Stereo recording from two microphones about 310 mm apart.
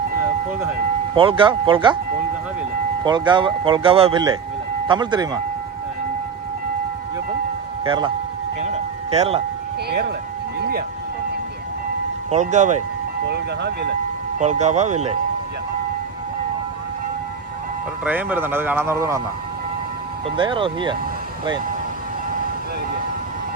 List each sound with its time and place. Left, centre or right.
1.1 s speech: centre
3.0 s speech: centre
7.9 s speech: centre
8.6 s a sound: right
9.9 s speech: right
10.6 s rain: right
12.3 s speech: right
14.3 s speech: right
18.0 s speech: centre
20.2 s speech: centre